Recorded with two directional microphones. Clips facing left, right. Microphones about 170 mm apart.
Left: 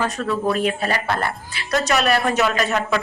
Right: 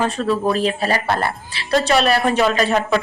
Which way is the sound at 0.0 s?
25° right (ahead or behind).